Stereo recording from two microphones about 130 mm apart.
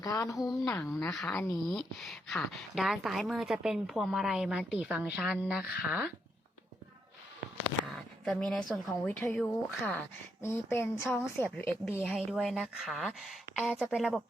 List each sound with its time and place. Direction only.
0.0 s speech: 25° left (ahead or behind)
1.2 s a woman's voice: 10° left (ahead or behind); by 6.1 s 10° right (ahead or behind)
7.9 s a woman's voice: 5° left (ahead or behind)
12.0 s a woman's voice: centre (ahead or behind)